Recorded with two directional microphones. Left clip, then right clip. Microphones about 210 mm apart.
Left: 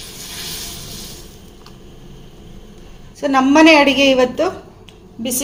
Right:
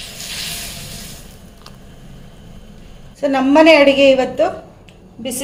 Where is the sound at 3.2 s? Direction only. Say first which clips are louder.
Even; 10° left (ahead or behind).